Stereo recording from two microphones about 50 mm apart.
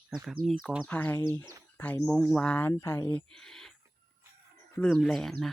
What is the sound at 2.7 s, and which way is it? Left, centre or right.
Speech, left.